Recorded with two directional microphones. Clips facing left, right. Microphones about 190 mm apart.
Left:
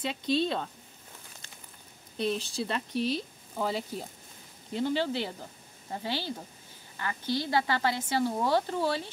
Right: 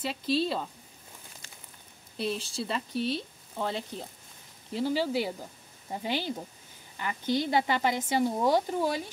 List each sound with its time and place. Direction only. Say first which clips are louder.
0.0 s speech: even; 5° right (ahead or behind)
2.1 s speech: left 2 dB; centre (ahead or behind)
4.7 s speech: right 1 dB; 5° right (ahead or behind)